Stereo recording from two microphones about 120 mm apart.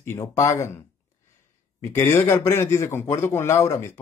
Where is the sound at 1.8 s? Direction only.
20° left (ahead or behind).